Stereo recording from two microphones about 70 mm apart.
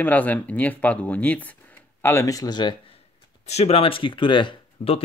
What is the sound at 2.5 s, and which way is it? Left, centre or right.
Speech, left.